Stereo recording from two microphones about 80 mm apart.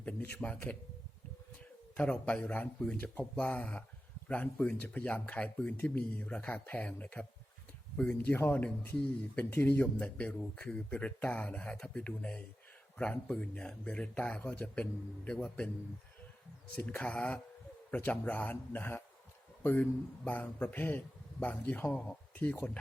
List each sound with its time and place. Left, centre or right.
0.0 s a man's voice: left
2.0 s speech: centre
8.3 s a man's voice: left
16.7 s a man's voice: centre